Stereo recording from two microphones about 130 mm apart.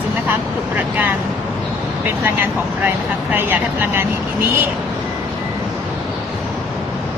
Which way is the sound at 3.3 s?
15° right (ahead or behind).